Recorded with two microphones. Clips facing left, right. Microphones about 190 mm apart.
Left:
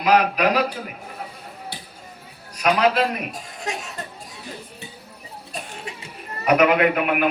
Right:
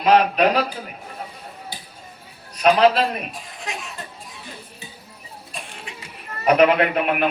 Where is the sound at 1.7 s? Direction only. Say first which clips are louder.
Left 1 dB; 65° left (ahead or behind).